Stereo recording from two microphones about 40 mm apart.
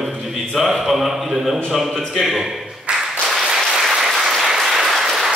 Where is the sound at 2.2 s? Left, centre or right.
Centre.